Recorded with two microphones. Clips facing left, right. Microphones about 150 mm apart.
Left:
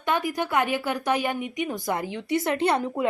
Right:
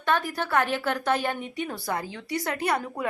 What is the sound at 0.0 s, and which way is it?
A woman's voice, 15° left (ahead or behind).